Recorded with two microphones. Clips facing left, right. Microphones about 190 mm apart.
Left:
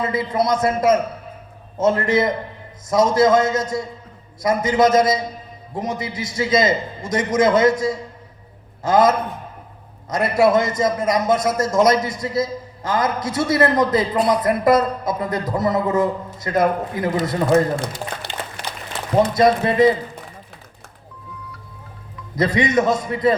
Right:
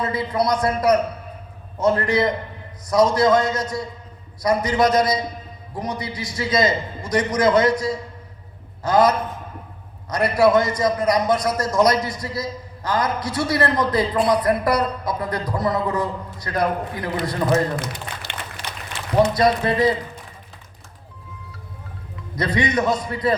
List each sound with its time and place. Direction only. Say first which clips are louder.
0.0 s a man's voice: left 1 dB; 20° left (ahead or behind)
18.3 s a sound: left 4 dB; 65° right (ahead or behind)
19.3 s a man's voice: left 2 dB; 20° left (ahead or behind)
22.4 s a man's voice: left 3 dB; 20° left (ahead or behind)